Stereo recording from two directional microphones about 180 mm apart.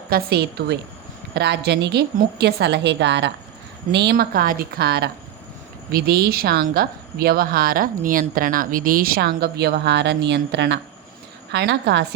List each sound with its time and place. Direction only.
0.1 s a woman's voice: 60° right (ahead or behind)